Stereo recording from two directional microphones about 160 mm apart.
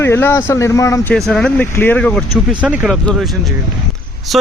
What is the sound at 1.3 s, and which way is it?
Speech, 5° left (ahead or behind).